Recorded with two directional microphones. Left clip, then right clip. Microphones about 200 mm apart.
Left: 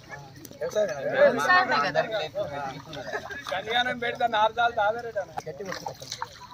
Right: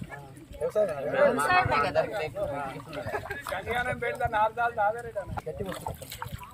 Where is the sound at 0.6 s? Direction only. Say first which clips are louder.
Even; 25° left (ahead or behind).